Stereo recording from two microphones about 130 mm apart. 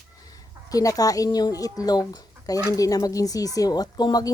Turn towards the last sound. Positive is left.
turn(degrees=30)  # may be behind; listen again after turning